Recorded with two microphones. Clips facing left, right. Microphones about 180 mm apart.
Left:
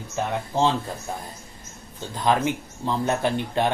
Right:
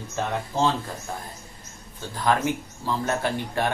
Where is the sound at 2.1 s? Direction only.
20° left (ahead or behind).